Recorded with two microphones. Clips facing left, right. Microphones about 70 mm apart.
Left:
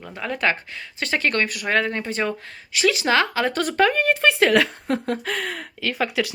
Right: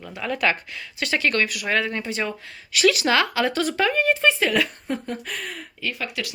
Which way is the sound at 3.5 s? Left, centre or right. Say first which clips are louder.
Left 3 dB; left.